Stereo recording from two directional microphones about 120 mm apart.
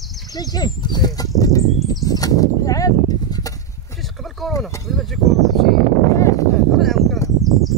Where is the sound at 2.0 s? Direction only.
30° left (ahead or behind).